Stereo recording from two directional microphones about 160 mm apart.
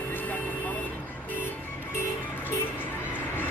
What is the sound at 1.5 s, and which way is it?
Music, 15° left (ahead or behind).